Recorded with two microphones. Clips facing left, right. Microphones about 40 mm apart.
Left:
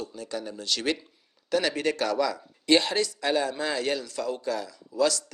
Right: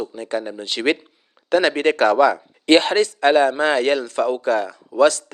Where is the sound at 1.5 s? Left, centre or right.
Right.